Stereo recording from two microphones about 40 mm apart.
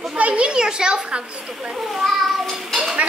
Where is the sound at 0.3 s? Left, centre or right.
Right.